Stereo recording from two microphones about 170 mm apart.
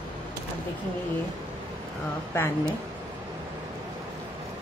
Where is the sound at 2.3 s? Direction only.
15° left (ahead or behind).